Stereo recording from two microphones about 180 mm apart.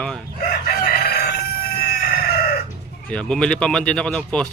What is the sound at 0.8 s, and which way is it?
Crowing, 60° left (ahead or behind).